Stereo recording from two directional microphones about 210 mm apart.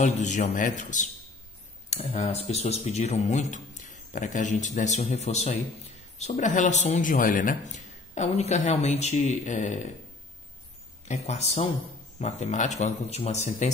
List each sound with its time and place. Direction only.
0.0 s speech: 35° left (ahead or behind)
11.1 s speech: 30° left (ahead or behind)